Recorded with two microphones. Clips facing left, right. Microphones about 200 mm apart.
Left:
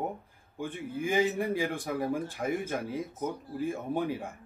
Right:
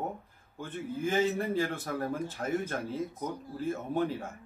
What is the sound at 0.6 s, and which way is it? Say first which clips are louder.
A man's voice: even; 10° left (ahead or behind).